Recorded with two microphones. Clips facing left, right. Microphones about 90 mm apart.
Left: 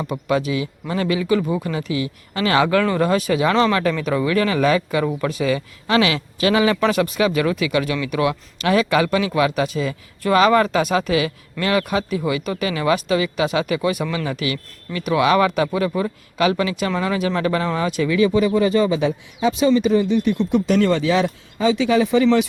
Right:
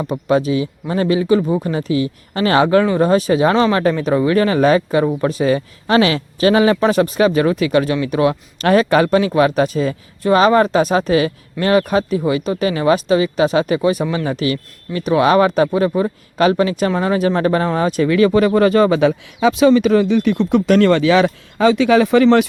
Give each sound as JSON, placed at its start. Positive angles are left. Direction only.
{"t": 0.3, "sound": "speech", "side_deg": -35}
{"t": 10.2, "sound": "speech", "side_deg": -30}
{"t": 18.3, "sound": "speech", "side_deg": -60}